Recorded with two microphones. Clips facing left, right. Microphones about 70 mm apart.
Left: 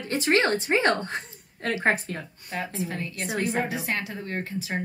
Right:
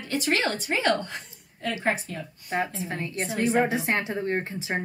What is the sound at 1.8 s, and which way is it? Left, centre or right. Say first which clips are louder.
Speech: left 3 dB; left.